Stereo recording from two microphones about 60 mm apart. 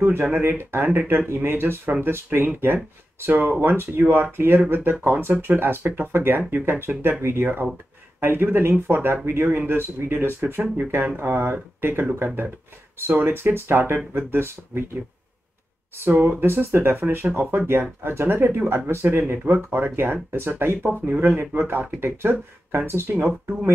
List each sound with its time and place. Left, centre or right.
0.3 s speech: right
16.1 s speech: right